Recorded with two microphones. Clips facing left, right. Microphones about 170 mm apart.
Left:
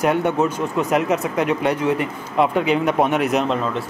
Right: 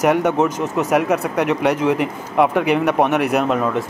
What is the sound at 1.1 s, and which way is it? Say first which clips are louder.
Speech: right 1 dB; 70° right (ahead or behind).